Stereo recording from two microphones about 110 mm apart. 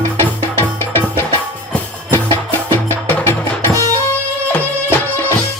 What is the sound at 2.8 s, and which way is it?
Music, 20° left (ahead or behind).